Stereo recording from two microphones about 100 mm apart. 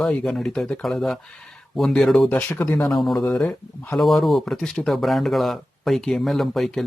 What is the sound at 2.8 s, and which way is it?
Speech, centre (ahead or behind).